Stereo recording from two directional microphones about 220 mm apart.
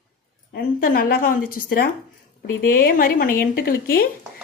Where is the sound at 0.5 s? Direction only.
45° left (ahead or behind).